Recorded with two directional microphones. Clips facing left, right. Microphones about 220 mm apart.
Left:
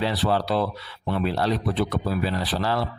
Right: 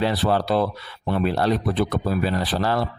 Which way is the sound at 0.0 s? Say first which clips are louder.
Right 2 dB; 50° right (ahead or behind).